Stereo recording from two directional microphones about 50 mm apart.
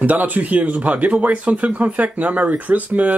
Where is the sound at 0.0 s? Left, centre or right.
Right.